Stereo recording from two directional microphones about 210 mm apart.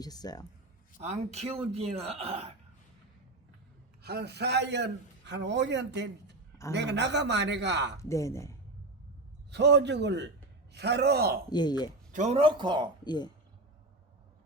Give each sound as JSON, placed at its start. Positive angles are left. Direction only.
{"t": 0.0, "sound": "speech", "side_deg": 20}
{"t": 0.9, "sound": "speech", "side_deg": -30}
{"t": 4.0, "sound": "a man's voice", "side_deg": -50}
{"t": 8.0, "sound": "speech", "side_deg": 15}
{"t": 9.5, "sound": "a man's voice", "side_deg": -55}
{"t": 11.4, "sound": "speech", "side_deg": 20}
{"t": 12.1, "sound": "speech", "side_deg": -30}
{"t": 13.1, "sound": "speech", "side_deg": 20}